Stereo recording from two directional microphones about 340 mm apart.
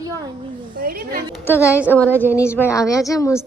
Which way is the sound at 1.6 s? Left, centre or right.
Centre.